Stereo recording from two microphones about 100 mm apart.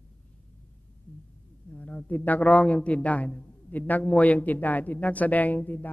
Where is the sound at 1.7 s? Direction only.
15° left (ahead or behind).